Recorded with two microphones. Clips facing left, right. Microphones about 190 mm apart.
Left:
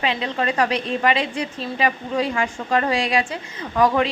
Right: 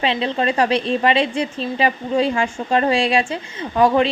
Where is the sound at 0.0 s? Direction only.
25° right (ahead or behind).